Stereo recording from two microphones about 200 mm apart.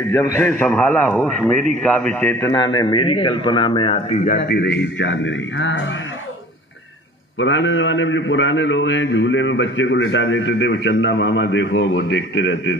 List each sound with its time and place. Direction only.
0.1 s a man's voice: 15° left (ahead or behind)
2.5 s a man's voice: 20° left (ahead or behind)
4.4 s speech: 55° left (ahead or behind)
7.3 s a man's voice: 70° left (ahead or behind)